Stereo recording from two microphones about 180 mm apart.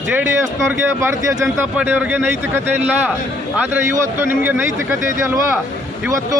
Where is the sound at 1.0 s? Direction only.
15° right (ahead or behind).